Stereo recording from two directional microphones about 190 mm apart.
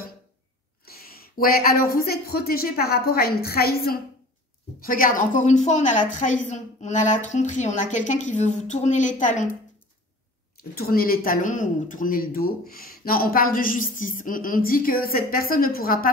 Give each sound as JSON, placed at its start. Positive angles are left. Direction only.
{"t": 0.8, "sound": "a woman's voice", "side_deg": 50}
{"t": 10.6, "sound": "speech", "side_deg": 50}